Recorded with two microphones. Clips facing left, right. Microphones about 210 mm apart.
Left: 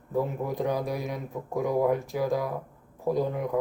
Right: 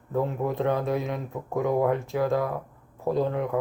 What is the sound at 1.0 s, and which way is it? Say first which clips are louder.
Speech: right 2 dB; centre (ahead or behind).